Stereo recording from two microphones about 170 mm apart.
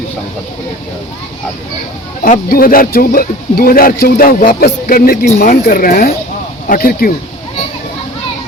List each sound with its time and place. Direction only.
2.2 s speech: 55° left (ahead or behind)